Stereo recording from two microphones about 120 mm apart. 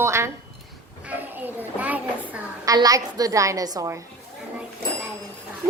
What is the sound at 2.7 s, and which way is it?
Speech, 30° right (ahead or behind).